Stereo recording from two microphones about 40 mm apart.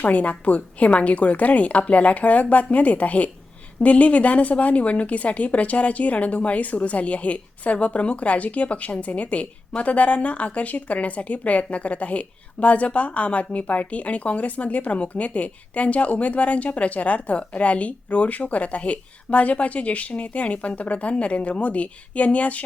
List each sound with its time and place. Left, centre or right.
0.0 s a woman's voice: left